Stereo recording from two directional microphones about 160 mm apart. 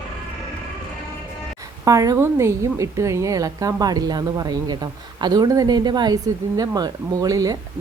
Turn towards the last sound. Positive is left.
turn(degrees=-20)  # may be behind; listen again after turning